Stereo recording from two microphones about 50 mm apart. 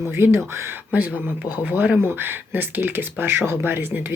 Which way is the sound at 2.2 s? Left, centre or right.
Right.